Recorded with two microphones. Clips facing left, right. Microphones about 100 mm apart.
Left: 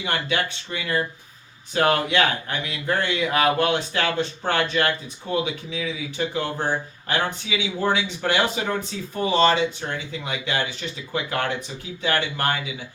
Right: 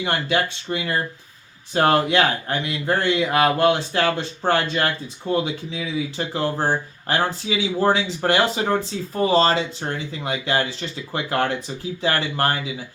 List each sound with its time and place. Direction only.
0.0 s speech: 30° right (ahead or behind)